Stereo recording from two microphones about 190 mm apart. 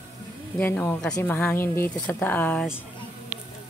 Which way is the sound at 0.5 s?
10° left (ahead or behind).